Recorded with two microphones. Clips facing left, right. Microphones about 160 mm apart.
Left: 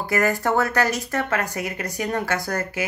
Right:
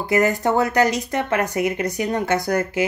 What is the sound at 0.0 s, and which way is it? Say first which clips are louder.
Speech: right 3 dB; 20° right (ahead or behind).